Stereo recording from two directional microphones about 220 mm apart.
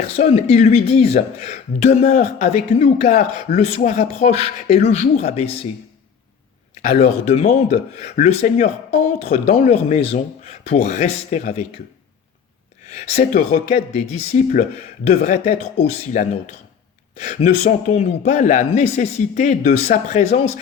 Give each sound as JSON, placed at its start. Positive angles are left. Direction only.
{"t": 0.2, "sound": "speech", "side_deg": 30}
{"t": 7.0, "sound": "speech", "side_deg": 30}
{"t": 13.7, "sound": "speech", "side_deg": 30}